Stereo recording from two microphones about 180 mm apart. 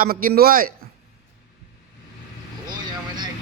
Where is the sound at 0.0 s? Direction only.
50° right (ahead or behind).